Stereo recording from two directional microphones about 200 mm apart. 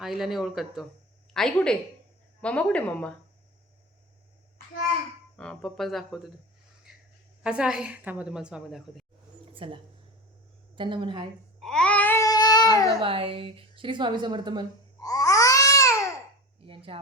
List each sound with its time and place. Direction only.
0.0 s a woman's voice: centre (ahead or behind)
5.4 s a woman's voice: 5° left (ahead or behind)
6.9 s a sound: 5° right (ahead or behind)
7.4 s a woman's voice: 5° right (ahead or behind)
9.6 s a woman's voice: 25° right (ahead or behind)
11.6 s babbling: 5° left (ahead or behind); by 12.6 s 20° left (ahead or behind)
12.7 s a woman's voice: 15° left (ahead or behind)
13.0 s a woman's voice: 25° right (ahead or behind)
15.0 s babbling: 20° left (ahead or behind)
16.6 s a sound: 25° right (ahead or behind)